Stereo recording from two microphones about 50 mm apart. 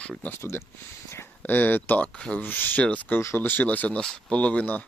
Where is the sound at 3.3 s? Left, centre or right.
Left.